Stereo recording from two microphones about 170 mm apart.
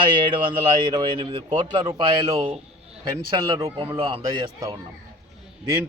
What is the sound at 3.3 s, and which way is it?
A man's voice, 20° right (ahead or behind).